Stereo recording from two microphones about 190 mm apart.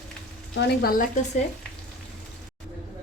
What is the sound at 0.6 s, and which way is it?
Speech, 55° left (ahead or behind).